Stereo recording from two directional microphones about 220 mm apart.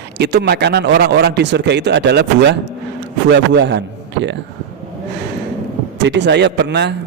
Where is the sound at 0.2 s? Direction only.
50° right (ahead or behind).